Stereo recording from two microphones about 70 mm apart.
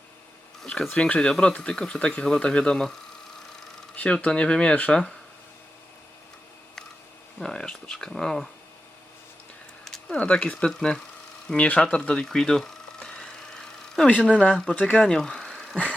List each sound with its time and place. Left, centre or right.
0.6 s a sound: centre
0.9 s speech: centre
3.9 s speech: centre
7.3 s speech: centre
9.8 s a sound: centre
10.2 s speech: centre
13.0 s vehicle: centre
14.1 s speech: centre
15.0 s a sound: centre